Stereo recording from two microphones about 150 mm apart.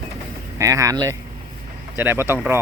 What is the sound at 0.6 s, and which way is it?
Speech, 20° right (ahead or behind).